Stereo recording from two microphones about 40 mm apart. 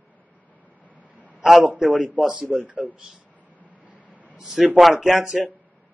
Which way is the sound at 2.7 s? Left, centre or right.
Right.